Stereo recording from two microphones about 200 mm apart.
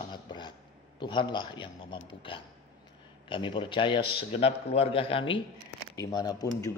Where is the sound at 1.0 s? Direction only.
20° left (ahead or behind).